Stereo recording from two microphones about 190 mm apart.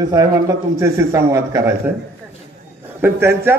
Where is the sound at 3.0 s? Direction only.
10° right (ahead or behind).